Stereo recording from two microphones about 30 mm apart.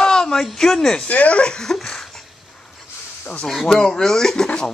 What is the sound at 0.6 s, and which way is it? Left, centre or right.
Speech, centre.